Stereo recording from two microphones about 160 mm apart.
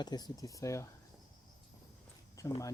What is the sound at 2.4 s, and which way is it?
Speech, 20° left (ahead or behind).